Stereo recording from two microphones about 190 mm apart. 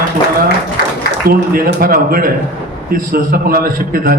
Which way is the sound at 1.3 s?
50° right (ahead or behind).